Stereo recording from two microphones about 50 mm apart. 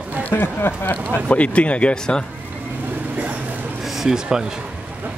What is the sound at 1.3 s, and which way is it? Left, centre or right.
Speech, left.